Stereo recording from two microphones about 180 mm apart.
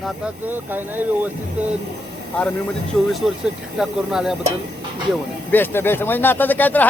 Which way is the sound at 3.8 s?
Centre (ahead or behind).